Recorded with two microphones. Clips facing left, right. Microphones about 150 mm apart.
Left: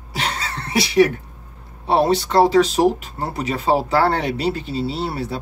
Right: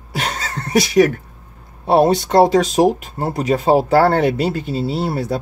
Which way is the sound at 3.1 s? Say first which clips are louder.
Right 6 dB; 40° right (ahead or behind).